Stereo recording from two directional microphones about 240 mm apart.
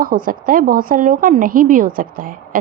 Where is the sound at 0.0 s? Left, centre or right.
Right.